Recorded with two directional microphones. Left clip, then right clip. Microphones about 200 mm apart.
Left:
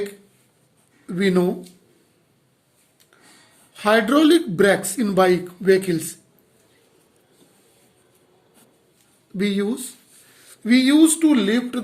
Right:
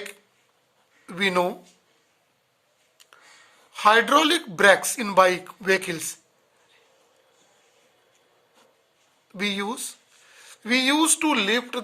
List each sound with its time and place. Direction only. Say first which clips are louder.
1.0 s a man's voice: left 2 dB; 45° right (ahead or behind)
3.7 s a man's voice: right 1 dB; 45° right (ahead or behind)
9.4 s a man's voice: left 3 dB; 45° right (ahead or behind)